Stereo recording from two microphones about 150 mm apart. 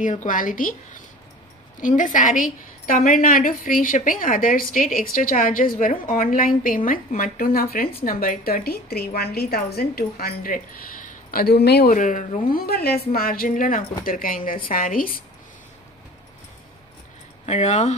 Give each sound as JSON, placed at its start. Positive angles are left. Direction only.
{"t": 0.0, "sound": "a woman's voice", "side_deg": 55}
{"t": 8.0, "sound": "a woman's voice", "side_deg": 70}
{"t": 12.6, "sound": "speech", "side_deg": 90}
{"t": 17.5, "sound": "speech", "side_deg": 50}